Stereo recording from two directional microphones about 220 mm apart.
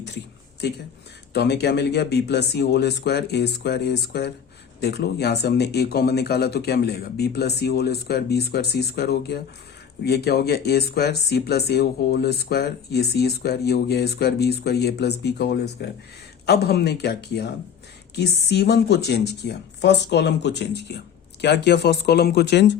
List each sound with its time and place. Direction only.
0.6 s speech: 50° left (ahead or behind)